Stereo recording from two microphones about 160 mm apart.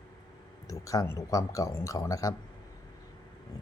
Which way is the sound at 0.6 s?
20° left (ahead or behind).